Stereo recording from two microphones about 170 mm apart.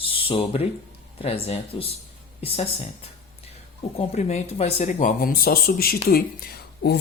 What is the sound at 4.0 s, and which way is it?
A woman's voice, 40° left (ahead or behind).